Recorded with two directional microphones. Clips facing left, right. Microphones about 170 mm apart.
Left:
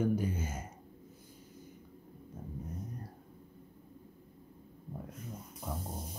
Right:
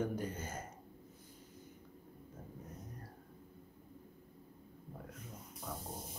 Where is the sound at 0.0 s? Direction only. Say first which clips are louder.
Left 6 dB; 10° left (ahead or behind).